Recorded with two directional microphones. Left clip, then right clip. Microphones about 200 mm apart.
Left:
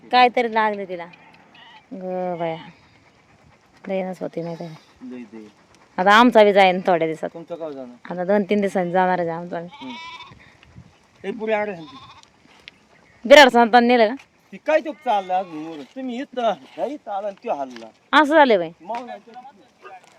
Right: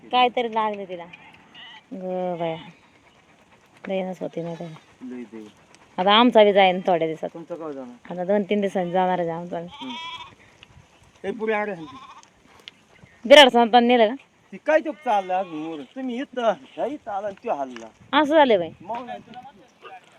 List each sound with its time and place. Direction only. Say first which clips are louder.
0.1 s a woman's voice: left 4 dB; 20° left (ahead or behind)
2.0 s speech: left 1 dB; centre (ahead or behind)
3.8 s a woman's voice: left 2 dB; 5° left (ahead or behind)
5.0 s speech: even; 40° right (ahead or behind)
6.0 s a woman's voice: left 3 dB; 15° left (ahead or behind)
11.2 s a woman's voice: left 2 dB; 15° left (ahead or behind)
11.9 s goat: even; centre (ahead or behind)
12.7 s livestock: even; 60° right (ahead or behind)
13.2 s a woman's voice: left 2 dB; 10° left (ahead or behind)